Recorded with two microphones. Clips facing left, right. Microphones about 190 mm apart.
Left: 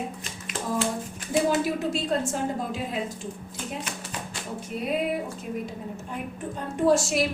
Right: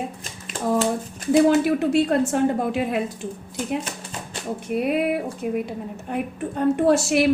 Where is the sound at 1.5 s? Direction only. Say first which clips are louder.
Right 7 dB; 65° right (ahead or behind).